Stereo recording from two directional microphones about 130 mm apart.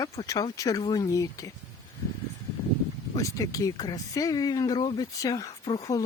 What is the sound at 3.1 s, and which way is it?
Speech, 25° left (ahead or behind).